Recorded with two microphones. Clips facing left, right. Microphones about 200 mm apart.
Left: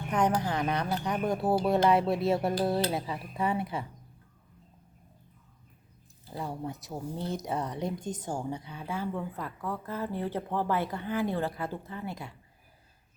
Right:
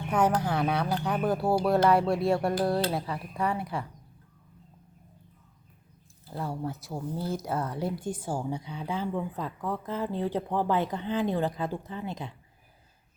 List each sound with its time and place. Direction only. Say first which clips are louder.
0.1 s a woman's voice: right 2 dB; 5° right (ahead or behind)
6.4 s a woman's voice: right 2 dB; centre (ahead or behind); by 12.3 s 20° right (ahead or behind)